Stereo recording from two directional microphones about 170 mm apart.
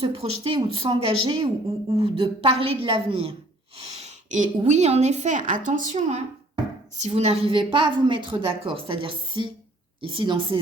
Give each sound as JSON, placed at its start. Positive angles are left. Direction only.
{"t": 0.0, "sound": "a woman's voice", "side_deg": -35}